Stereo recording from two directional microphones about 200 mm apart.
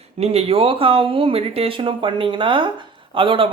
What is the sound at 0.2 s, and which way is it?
Speech, 30° right (ahead or behind).